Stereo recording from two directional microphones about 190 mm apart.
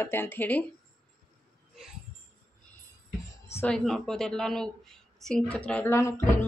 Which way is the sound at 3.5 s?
10° left (ahead or behind).